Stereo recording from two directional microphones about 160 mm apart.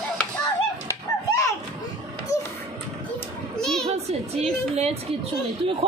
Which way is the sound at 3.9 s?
40° right (ahead or behind).